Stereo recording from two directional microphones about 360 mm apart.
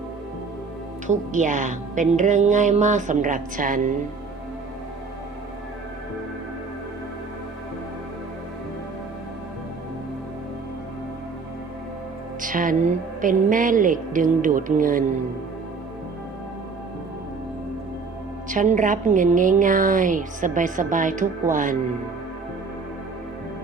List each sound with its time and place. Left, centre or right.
1.0 s a woman's voice: right
12.4 s a woman's voice: right
18.4 s a woman's voice: right